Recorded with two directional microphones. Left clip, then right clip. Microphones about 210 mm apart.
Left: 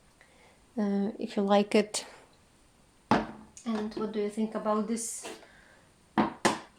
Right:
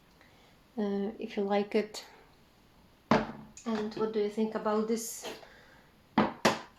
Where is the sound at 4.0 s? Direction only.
25° left (ahead or behind).